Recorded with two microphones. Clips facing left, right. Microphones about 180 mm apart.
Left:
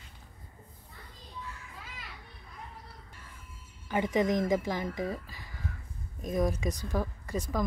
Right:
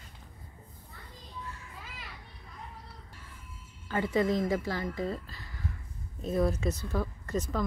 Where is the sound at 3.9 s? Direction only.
15° left (ahead or behind).